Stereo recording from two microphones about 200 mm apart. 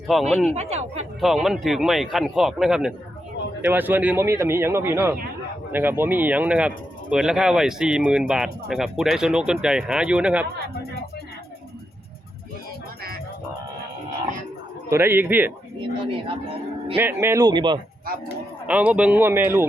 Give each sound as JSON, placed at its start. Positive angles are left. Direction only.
{"t": 0.1, "sound": "speech", "side_deg": 0}
{"t": 0.5, "sound": "speech", "side_deg": -30}
{"t": 1.2, "sound": "speech", "side_deg": 0}
{"t": 14.8, "sound": "speech", "side_deg": -10}
{"t": 15.8, "sound": "speech", "side_deg": -25}
{"t": 17.0, "sound": "speech", "side_deg": -10}
{"t": 18.6, "sound": "speech", "side_deg": -5}